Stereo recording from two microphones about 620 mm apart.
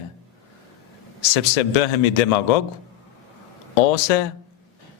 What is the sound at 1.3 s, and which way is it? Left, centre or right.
A man's voice, left.